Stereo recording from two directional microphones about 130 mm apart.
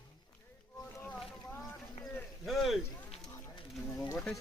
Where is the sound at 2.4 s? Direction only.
Centre (ahead or behind).